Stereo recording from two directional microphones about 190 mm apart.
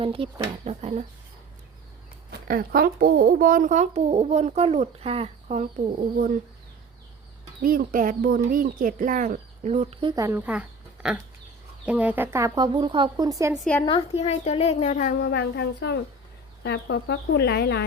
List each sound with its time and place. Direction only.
0.0 s speech: 30° right (ahead or behind)
2.3 s speech: 50° right (ahead or behind)
7.6 s speech: 50° right (ahead or behind); by 13.5 s 20° right (ahead or behind)
13.8 s a woman's voice: 30° left (ahead or behind)
15.2 s speech: 60° left (ahead or behind)